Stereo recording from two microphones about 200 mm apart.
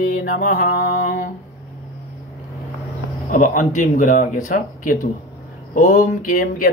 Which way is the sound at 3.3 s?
40° left (ahead or behind).